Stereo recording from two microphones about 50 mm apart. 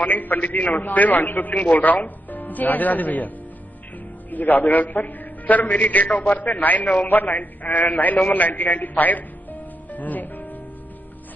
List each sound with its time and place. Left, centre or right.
0.0 s a man's voice: left
4.3 s a man's voice: left
8.3 s music: left